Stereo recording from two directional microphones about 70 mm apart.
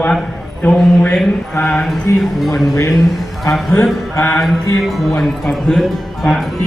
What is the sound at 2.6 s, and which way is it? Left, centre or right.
Speech, left.